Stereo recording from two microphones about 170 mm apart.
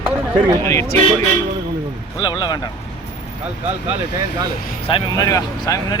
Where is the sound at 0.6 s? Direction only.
15° left (ahead or behind).